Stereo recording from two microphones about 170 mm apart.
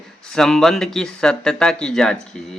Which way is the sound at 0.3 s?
Centre (ahead or behind).